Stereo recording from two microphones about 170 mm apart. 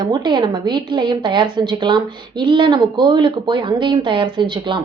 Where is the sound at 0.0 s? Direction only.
25° right (ahead or behind).